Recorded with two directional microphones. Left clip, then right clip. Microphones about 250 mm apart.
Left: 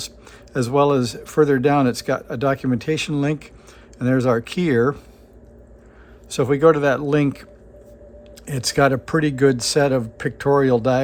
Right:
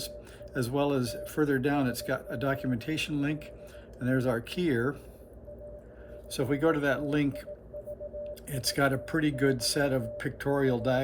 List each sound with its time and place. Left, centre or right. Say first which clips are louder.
0.5 s speech: left 12 dB; left
6.3 s speech: left 12 dB; left
8.4 s speech: left 11 dB; left